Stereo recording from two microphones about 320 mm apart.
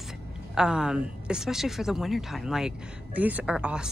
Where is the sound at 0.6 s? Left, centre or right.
Centre.